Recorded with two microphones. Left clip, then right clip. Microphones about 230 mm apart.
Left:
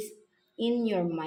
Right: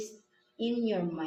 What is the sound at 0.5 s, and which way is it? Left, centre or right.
Speech, left.